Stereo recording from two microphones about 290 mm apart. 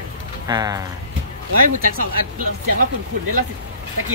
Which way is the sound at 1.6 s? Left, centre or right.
Right.